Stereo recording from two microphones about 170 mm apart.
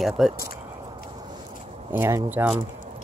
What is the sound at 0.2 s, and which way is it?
Speech, centre (ahead or behind).